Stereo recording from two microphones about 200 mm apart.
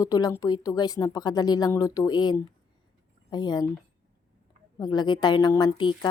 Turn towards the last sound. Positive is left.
turn(degrees=20)  # may be behind; listen again after turning